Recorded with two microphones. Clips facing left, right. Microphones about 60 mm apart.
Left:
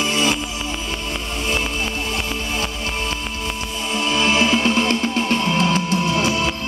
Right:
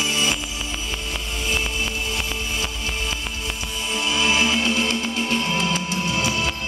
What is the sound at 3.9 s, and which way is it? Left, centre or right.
Music, left.